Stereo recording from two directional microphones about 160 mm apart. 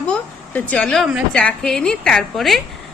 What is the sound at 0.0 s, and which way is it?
A woman's voice, 5° left (ahead or behind).